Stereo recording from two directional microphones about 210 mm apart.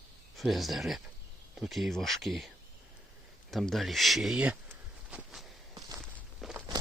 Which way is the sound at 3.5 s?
Centre (ahead or behind).